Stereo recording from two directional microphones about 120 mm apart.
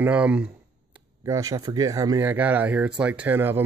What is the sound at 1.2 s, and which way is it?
Speech, 25° right (ahead or behind).